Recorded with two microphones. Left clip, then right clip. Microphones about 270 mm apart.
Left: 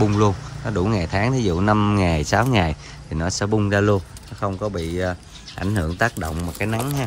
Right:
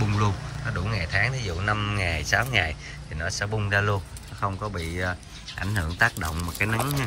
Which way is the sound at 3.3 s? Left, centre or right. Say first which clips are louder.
Left 5 dB; centre.